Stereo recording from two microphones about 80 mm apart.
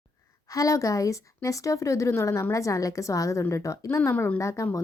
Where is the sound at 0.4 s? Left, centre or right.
Left.